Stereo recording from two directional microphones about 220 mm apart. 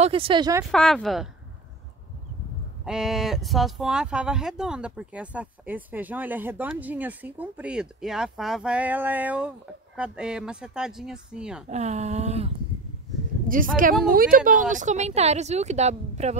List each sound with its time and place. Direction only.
0.0 s speech: 25° right (ahead or behind)
0.7 s speech: centre (ahead or behind)
2.8 s speech: centre (ahead or behind)
11.7 s speech: 30° right (ahead or behind)
13.5 s speech: 40° right (ahead or behind)